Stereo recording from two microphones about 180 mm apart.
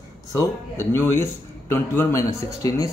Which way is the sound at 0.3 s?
15° left (ahead or behind).